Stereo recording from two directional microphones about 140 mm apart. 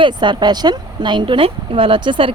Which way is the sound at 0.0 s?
35° right (ahead or behind).